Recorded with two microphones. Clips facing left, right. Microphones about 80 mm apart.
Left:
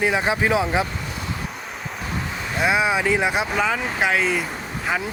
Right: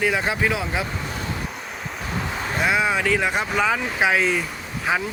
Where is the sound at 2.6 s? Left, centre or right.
Centre.